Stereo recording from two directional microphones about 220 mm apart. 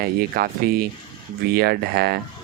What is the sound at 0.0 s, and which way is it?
Speech, 45° right (ahead or behind).